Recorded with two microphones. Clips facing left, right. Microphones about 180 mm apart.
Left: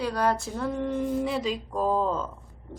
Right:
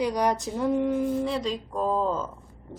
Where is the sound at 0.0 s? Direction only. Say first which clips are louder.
Right 1 dB; 15° right (ahead or behind).